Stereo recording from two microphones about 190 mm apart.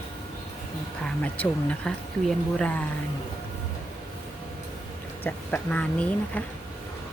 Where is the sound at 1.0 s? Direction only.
5° left (ahead or behind).